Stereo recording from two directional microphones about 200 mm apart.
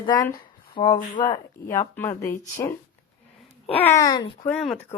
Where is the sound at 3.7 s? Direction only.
15° left (ahead or behind).